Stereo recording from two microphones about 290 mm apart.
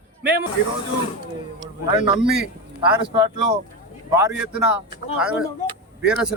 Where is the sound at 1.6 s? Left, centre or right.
Centre.